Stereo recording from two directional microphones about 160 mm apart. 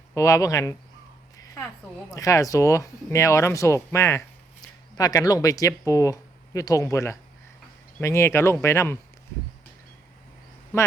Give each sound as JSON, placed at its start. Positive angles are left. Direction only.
{"t": 0.1, "sound": "speech", "side_deg": 20}
{"t": 2.0, "sound": "speech", "side_deg": 20}